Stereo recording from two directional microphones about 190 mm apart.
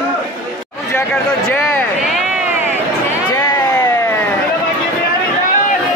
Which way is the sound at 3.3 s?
15° left (ahead or behind).